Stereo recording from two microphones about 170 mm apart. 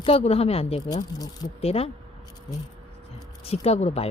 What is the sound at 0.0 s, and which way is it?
Speech, 35° left (ahead or behind).